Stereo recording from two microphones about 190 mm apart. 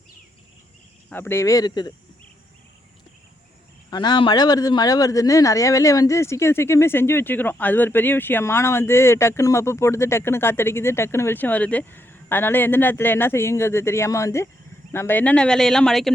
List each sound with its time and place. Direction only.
1.1 s a man's voice: 10° left (ahead or behind)
3.8 s a man's voice: 20° left (ahead or behind); by 16.1 s centre (ahead or behind)